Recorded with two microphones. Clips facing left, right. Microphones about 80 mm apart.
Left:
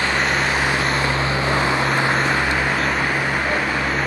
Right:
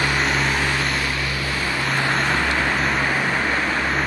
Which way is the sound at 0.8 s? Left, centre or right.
Left.